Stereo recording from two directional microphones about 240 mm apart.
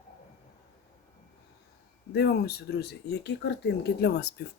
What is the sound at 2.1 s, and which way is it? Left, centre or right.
Speech, left.